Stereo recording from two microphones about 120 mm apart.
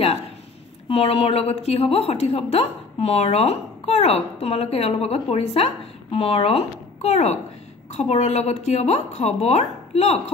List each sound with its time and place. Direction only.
0.8 s a woman's voice: 55° left (ahead or behind)